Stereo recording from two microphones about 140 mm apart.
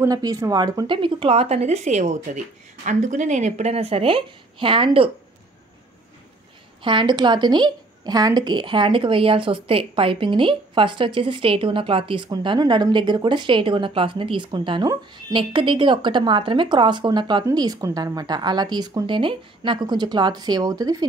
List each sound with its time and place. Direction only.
0.0 s a woman's voice: 25° right (ahead or behind)
6.8 s a woman's voice: 35° right (ahead or behind)